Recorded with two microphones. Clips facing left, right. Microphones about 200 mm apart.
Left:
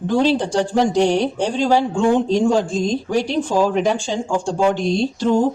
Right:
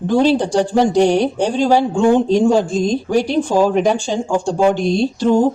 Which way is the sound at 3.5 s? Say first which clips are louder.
Right 3 dB; 40° right (ahead or behind).